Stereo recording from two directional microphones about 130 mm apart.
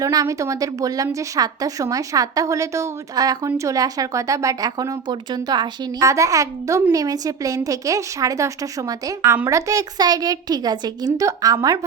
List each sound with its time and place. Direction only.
0.0 s a woman's voice: 30° right (ahead or behind)